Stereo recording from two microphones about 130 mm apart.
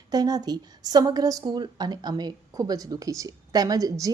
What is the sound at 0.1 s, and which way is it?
A woman's voice, 30° right (ahead or behind).